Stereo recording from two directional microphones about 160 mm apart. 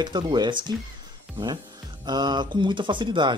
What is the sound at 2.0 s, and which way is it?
Speech, 25° right (ahead or behind).